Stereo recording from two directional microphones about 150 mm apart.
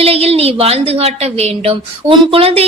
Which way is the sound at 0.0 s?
40° right (ahead or behind).